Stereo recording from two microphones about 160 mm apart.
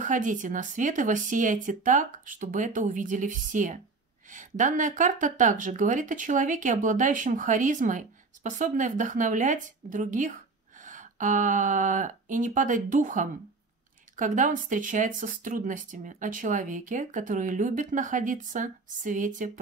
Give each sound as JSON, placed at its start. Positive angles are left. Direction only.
{"t": 0.0, "sound": "speech", "side_deg": -55}